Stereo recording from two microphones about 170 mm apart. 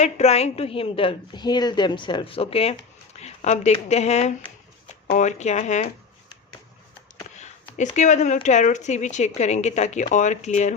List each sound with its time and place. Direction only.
0.0 s a woman's voice: 40° left (ahead or behind)
7.3 s a sound: 45° left (ahead or behind)
8.4 s speech: 45° left (ahead or behind)